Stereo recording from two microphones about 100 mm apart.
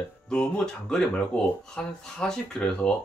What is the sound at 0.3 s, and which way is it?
Speech, 10° left (ahead or behind).